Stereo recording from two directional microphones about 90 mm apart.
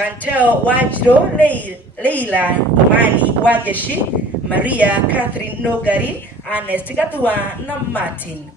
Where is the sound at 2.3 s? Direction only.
20° right (ahead or behind).